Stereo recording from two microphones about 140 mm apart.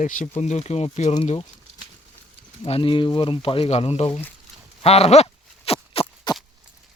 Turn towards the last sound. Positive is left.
turn(degrees=45)  # may be behind; listen again after turning